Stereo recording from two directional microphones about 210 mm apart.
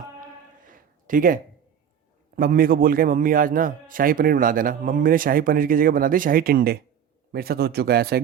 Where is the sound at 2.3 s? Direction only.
45° right (ahead or behind).